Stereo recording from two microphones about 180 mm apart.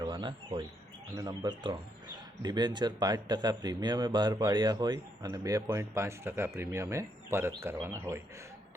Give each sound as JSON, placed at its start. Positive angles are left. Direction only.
{"t": 0.0, "sound": "bird", "side_deg": -25}
{"t": 1.1, "sound": "speech", "side_deg": -20}